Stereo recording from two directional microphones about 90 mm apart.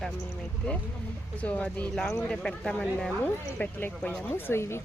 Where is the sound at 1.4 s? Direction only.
15° left (ahead or behind).